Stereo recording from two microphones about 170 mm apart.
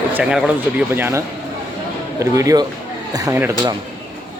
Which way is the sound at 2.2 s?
20° right (ahead or behind).